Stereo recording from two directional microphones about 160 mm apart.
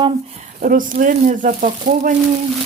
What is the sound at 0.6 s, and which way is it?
Speech, 55° right (ahead or behind).